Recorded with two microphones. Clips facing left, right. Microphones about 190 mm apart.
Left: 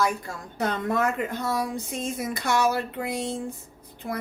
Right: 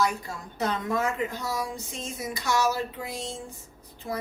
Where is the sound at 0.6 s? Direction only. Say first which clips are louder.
Left 2 dB; 55° left (ahead or behind).